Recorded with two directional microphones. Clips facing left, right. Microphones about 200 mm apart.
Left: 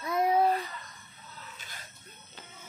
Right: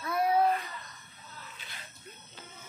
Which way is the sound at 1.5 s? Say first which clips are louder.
Left 1 dB; 45° left (ahead or behind).